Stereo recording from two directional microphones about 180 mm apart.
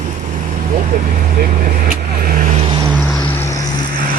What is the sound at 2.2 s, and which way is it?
Vehicle, 50° right (ahead or behind).